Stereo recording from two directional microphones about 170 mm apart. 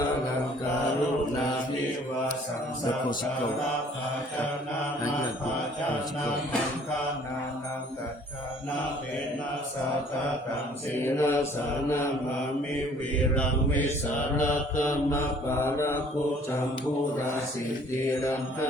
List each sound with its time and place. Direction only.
11.0 s mantra: 15° left (ahead or behind)
13.3 s mantra: 10° left (ahead or behind)
14.4 s mantra: 50° left (ahead or behind)
15.1 s mantra: 15° left (ahead or behind)
18.1 s mantra: 15° left (ahead or behind)